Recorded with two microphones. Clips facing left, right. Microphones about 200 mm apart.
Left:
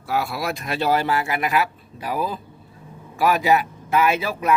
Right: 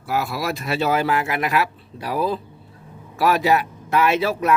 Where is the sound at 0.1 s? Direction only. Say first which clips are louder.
Right 1 dB; centre (ahead or behind).